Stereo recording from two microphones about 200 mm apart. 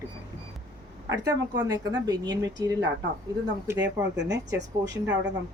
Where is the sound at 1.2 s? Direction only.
15° right (ahead or behind).